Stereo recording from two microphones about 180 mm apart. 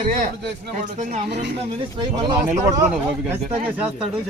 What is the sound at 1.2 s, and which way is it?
Speech, 70° right (ahead or behind).